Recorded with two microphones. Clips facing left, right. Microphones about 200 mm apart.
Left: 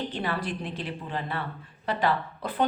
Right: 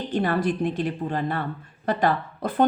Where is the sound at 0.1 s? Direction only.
45° right (ahead or behind).